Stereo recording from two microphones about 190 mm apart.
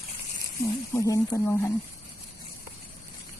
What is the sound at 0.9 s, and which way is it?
Speech, 15° left (ahead or behind).